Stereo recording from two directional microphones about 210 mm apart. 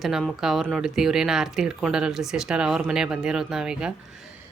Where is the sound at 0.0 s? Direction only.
Centre (ahead or behind).